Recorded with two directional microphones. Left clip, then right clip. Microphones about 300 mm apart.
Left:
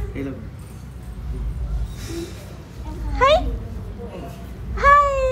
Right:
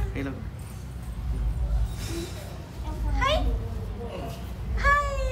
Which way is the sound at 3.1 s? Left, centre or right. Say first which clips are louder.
Left 10 dB; centre.